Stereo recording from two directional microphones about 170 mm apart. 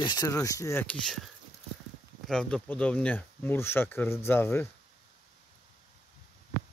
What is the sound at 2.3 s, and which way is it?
Speech, 5° left (ahead or behind).